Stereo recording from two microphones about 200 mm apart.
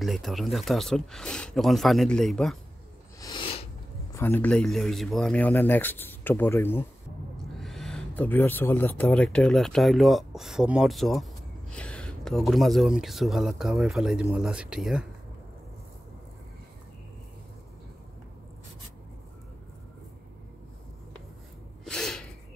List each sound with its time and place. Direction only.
0.0 s speech: centre (ahead or behind)
3.2 s a sound: 20° left (ahead or behind)
4.1 s speech: 10° left (ahead or behind)
21.8 s gasp: 5° left (ahead or behind)